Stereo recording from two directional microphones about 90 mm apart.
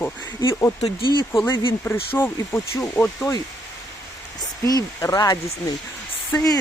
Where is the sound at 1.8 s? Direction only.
25° left (ahead or behind).